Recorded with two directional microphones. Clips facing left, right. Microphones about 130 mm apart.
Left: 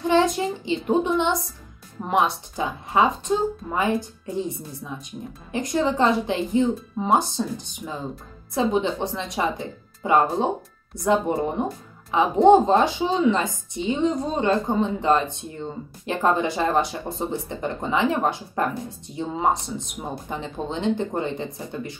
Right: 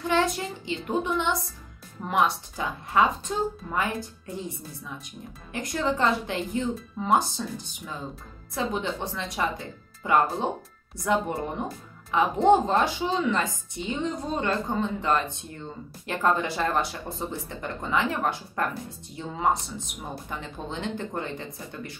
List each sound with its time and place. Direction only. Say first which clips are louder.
0.1 s speech: left 5 dB; 20° left (ahead or behind)
5.5 s speech: left 5 dB; 20° left (ahead or behind)